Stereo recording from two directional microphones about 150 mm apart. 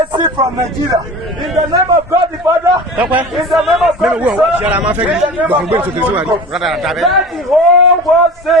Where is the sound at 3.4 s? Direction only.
Centre (ahead or behind).